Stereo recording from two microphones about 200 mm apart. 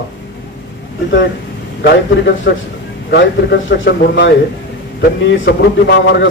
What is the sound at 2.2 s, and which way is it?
A man's voice, 65° left (ahead or behind).